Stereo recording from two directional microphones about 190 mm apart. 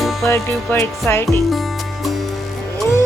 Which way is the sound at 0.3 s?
15° left (ahead or behind).